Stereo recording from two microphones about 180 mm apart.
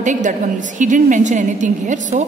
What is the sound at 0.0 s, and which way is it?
A woman's voice, 45° right (ahead or behind).